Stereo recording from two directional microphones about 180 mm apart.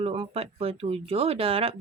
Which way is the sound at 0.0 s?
35° right (ahead or behind).